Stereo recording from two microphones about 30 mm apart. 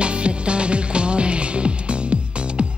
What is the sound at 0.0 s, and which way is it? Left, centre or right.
Music, right.